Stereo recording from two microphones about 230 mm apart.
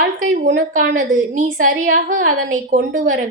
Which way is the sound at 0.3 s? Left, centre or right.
Right.